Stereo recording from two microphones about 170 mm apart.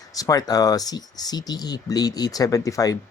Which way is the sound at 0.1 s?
20° left (ahead or behind).